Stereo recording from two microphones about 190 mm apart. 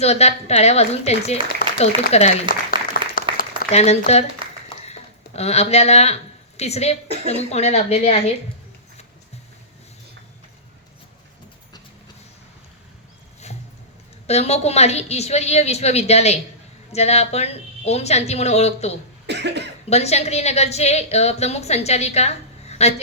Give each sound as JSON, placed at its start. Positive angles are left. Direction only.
{"t": 0.0, "sound": "a woman's voice", "side_deg": 35}
{"t": 2.6, "sound": "applause", "side_deg": 50}
{"t": 3.7, "sound": "a woman's voice", "side_deg": 35}
{"t": 4.8, "sound": "a sound", "side_deg": 35}
{"t": 6.6, "sound": "a woman's voice", "side_deg": 35}
{"t": 14.3, "sound": "a woman's voice", "side_deg": 35}
{"t": 19.3, "sound": "cough", "side_deg": -65}
{"t": 19.9, "sound": "a woman's voice", "side_deg": 35}